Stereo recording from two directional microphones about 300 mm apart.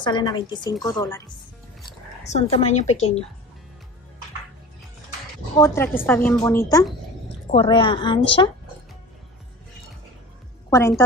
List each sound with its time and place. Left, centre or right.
0.0 s a woman's voice: centre
2.2 s a woman's voice: left
5.6 s a woman's voice: centre
10.7 s a woman's voice: centre